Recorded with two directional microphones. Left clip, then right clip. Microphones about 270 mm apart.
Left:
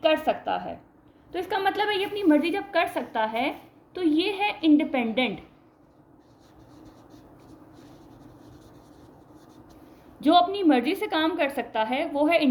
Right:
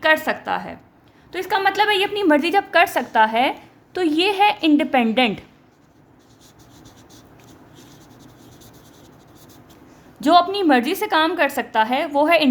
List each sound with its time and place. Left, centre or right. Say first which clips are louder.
0.0 s a woman's voice: right 5 dB; right
10.2 s a woman's voice: right 5 dB; right